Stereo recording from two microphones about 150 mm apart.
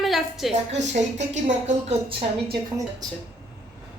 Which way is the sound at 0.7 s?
50° right (ahead or behind).